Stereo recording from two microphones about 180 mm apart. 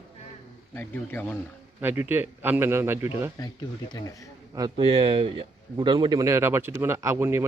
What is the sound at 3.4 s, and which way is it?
Speech, 20° left (ahead or behind).